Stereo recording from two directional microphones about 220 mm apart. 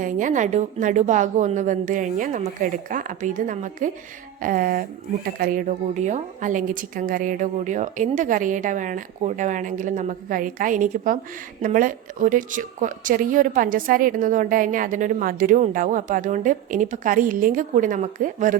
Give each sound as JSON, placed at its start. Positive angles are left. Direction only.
{"t": 0.0, "sound": "a woman's voice", "side_deg": -35}